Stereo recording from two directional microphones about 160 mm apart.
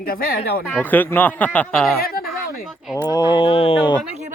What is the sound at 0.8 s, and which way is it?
Speech, 10° left (ahead or behind).